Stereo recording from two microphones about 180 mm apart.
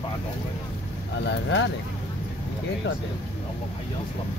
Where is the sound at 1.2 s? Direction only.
75° left (ahead or behind).